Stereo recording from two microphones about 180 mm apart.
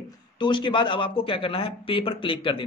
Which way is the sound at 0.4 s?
25° left (ahead or behind).